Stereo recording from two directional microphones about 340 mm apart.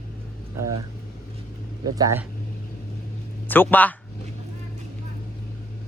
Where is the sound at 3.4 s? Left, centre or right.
Centre.